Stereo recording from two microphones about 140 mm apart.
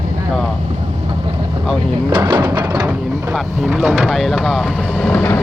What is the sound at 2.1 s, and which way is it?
Speech, 35° right (ahead or behind).